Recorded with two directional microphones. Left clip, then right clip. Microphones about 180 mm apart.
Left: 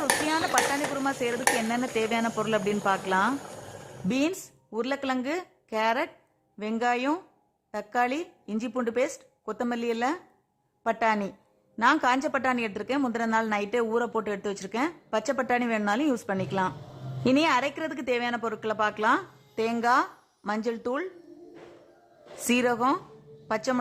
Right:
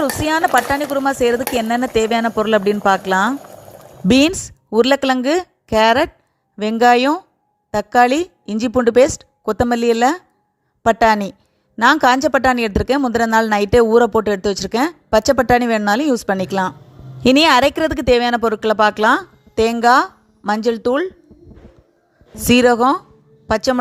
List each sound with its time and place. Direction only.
0.0 s a woman's voice: 40° right (ahead or behind)
4.1 s a woman's voice: 45° right (ahead or behind)
22.4 s a woman's voice: 40° right (ahead or behind)